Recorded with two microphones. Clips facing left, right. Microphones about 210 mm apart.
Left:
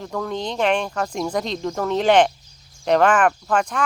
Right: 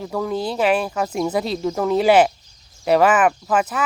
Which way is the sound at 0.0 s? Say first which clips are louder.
Right 3 dB; 5° right (ahead or behind).